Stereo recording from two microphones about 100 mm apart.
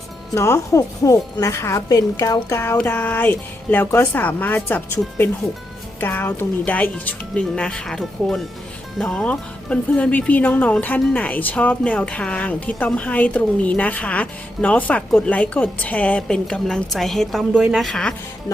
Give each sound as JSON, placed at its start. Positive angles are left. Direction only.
{"t": 0.3, "sound": "a woman's voice", "side_deg": 30}